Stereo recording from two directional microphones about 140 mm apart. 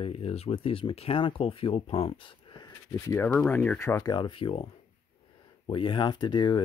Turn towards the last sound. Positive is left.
turn(degrees=35)  # may be behind; listen again after turning